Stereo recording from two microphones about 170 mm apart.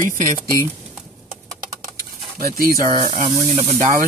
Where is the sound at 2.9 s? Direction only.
30° right (ahead or behind).